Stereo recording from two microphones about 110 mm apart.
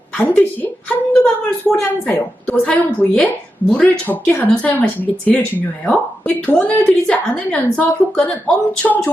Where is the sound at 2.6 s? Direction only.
10° left (ahead or behind).